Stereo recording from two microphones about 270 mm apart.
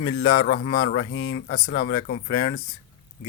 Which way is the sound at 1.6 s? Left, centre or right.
Left.